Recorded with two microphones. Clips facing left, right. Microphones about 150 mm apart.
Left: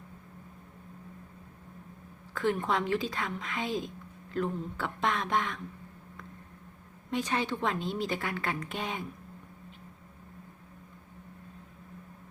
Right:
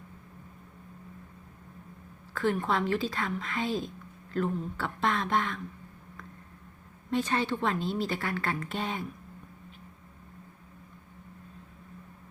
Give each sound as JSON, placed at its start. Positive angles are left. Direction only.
{"t": 2.3, "sound": "a woman's voice", "side_deg": 15}
{"t": 7.1, "sound": "a woman's voice", "side_deg": 15}